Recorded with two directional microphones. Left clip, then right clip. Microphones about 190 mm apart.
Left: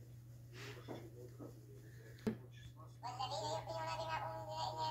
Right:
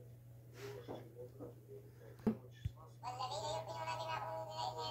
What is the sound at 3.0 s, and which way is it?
Music, 30° left (ahead or behind).